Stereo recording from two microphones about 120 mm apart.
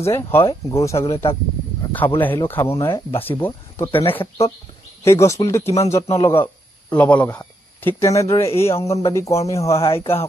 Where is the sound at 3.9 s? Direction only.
50° left (ahead or behind).